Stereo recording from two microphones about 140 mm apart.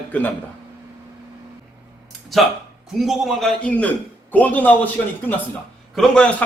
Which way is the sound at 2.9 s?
Centre (ahead or behind).